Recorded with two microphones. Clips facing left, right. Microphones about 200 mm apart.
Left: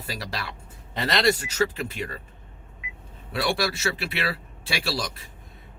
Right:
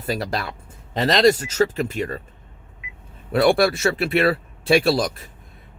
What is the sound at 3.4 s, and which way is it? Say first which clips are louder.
Speech: right 9 dB; 55° right (ahead or behind).